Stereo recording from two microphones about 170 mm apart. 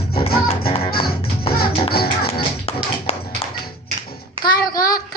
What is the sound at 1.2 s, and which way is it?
Music, 35° left (ahead or behind).